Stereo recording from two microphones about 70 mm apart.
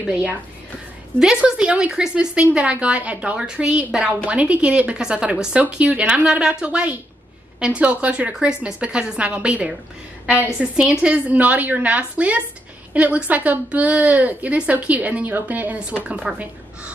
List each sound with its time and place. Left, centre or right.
1.2 s a woman's voice: centre